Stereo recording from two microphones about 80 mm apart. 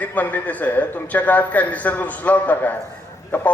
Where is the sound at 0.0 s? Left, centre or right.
Left.